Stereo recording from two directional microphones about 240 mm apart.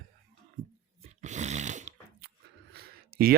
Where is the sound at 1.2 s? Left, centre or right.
Right.